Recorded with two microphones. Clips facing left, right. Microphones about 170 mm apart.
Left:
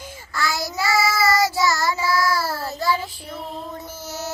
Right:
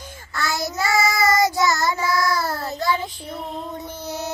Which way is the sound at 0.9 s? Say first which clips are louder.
Even; 20° right (ahead or behind).